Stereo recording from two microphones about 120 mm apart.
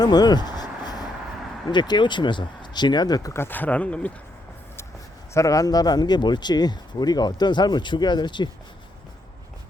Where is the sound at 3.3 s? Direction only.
20° left (ahead or behind).